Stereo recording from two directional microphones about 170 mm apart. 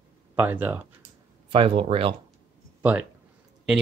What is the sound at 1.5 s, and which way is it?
Speech, 30° right (ahead or behind).